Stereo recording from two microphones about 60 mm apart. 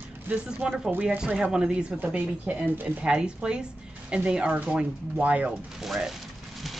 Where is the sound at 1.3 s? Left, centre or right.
Centre.